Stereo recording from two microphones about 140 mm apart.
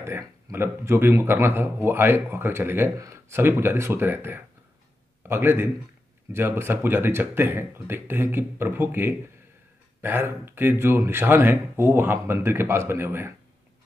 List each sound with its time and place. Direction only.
0.0 s a man's voice: 20° right (ahead or behind)